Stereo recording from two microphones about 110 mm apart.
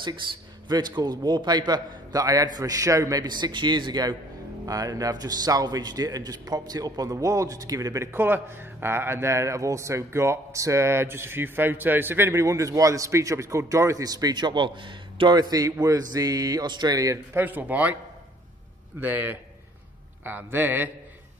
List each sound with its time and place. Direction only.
0.7 s a man's voice: 40° right (ahead or behind)
17.4 s speech: 15° right (ahead or behind)
18.9 s speech: 15° right (ahead or behind)